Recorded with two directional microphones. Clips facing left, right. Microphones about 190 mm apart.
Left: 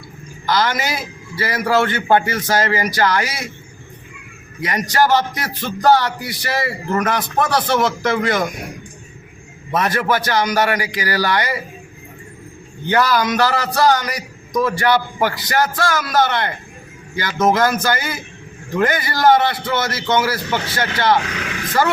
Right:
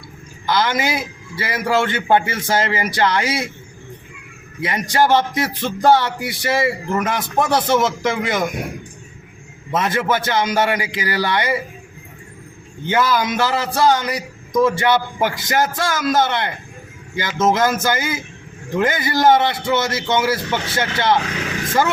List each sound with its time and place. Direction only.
0.4 s a man's voice: 20° right (ahead or behind)
4.6 s a man's voice: 25° right (ahead or behind)
9.7 s a man's voice: 20° right (ahead or behind)
12.9 s a man's voice: 20° right (ahead or behind)